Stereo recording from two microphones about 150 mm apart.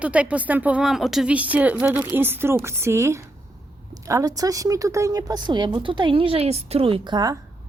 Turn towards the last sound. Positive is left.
turn(degrees=-25)  # may be behind; listen again after turning